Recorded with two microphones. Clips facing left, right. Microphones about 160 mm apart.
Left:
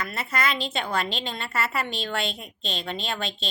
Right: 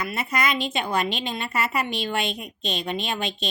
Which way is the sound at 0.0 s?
15° right (ahead or behind).